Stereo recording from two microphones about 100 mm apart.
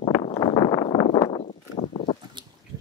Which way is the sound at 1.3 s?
90° left.